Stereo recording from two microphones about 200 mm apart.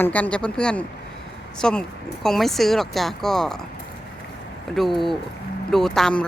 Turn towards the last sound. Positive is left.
turn(degrees=5)  # may be behind; listen again after turning